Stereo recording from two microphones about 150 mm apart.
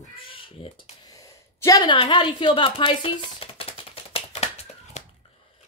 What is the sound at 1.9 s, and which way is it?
Speech, 35° left (ahead or behind).